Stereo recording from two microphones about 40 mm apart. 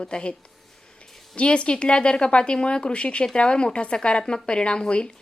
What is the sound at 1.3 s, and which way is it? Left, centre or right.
Speech, left.